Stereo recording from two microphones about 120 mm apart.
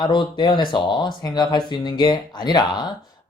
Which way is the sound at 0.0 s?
40° left (ahead or behind).